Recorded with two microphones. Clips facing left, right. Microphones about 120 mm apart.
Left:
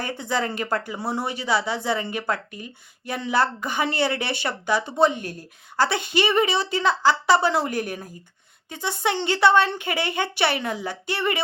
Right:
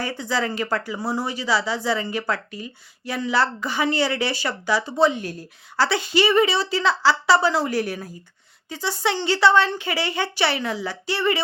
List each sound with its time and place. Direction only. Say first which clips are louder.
0.0 s a woman's voice: right 1 dB; 50° left (ahead or behind)